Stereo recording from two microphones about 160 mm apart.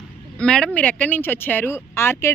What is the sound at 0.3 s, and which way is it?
Speech, 5° left (ahead or behind).